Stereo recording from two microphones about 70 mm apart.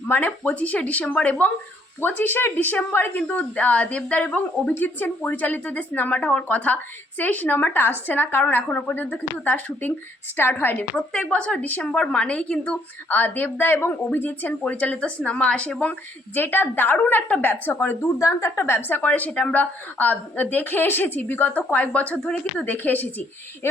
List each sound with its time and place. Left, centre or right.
0.1 s a woman's voice: left
4.7 s a woman's voice: left
10.9 s a woman's voice: centre
16.3 s a woman's voice: left
18.0 s a woman's voice: left; by 19.6 s centre
20.0 s a woman's voice: left